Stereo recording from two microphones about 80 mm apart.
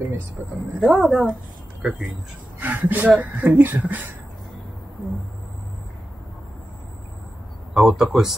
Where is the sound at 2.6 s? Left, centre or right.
Right.